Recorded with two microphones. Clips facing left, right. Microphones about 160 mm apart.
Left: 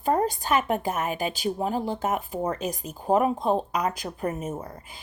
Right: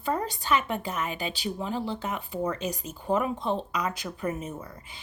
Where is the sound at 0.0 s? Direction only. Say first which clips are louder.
Left 6 dB; 40° left (ahead or behind).